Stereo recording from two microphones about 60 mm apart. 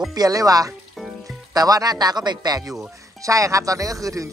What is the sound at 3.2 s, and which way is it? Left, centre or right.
Music, right.